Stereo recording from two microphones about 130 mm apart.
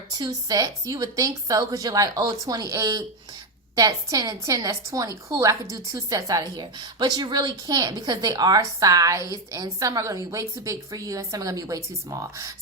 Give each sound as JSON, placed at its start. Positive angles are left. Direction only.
{"t": 0.2, "sound": "a woman's voice", "side_deg": -30}